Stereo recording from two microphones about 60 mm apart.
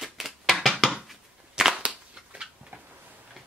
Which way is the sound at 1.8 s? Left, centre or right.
Centre.